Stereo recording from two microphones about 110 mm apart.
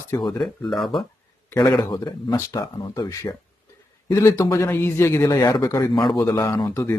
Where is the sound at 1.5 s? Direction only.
30° left (ahead or behind).